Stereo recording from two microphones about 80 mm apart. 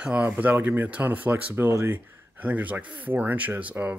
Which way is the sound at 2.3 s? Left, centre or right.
Centre.